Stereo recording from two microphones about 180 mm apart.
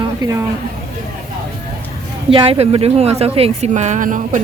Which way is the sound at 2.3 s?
30° right (ahead or behind).